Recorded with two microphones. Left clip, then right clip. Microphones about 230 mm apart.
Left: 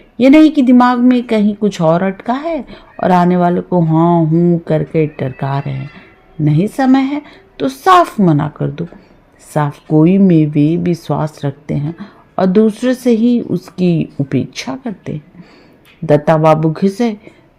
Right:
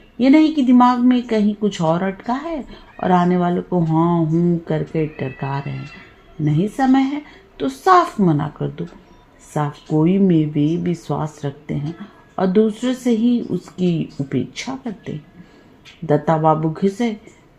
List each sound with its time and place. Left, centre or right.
0.2 s a woman's voice: left
16.3 s a woman's voice: left